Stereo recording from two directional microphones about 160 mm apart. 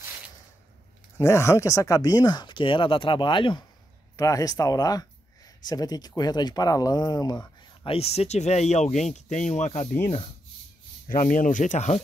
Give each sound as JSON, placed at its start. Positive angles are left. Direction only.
{"t": 1.1, "sound": "speech", "side_deg": 15}
{"t": 11.1, "sound": "speech", "side_deg": 55}